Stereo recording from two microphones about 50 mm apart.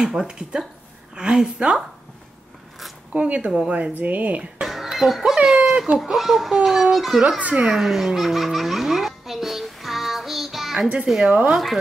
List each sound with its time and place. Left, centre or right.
0.0 s speech: centre
0.3 s speech: centre
3.1 s speech: right
3.7 s speech: right
4.9 s speech: centre
5.9 s a child's voice: centre
7.3 s speech: right
7.7 s baby laughter: centre
11.2 s speech: right
11.5 s a child's voice: centre